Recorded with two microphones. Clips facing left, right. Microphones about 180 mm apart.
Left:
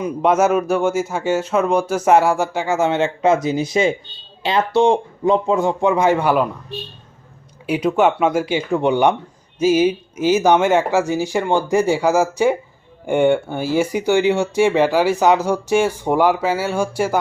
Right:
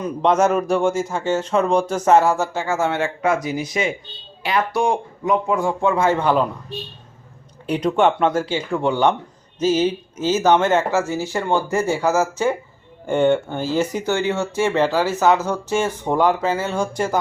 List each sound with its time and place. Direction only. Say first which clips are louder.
0.0 s speech: left 1 dB; 5° left (ahead or behind)
7.7 s speech: left 1 dB; 5° left (ahead or behind)